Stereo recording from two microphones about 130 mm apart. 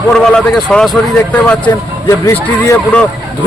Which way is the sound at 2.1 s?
20° left (ahead or behind).